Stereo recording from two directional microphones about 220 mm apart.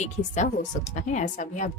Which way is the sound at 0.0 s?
35° left (ahead or behind).